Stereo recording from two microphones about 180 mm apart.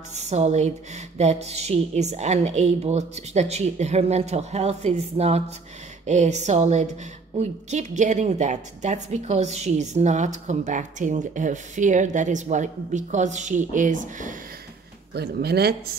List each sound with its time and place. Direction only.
0.1 s a woman's voice: 40° right (ahead or behind)
15.1 s speech: 65° right (ahead or behind)